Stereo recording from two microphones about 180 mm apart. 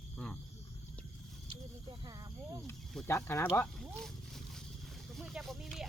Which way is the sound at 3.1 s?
15° left (ahead or behind).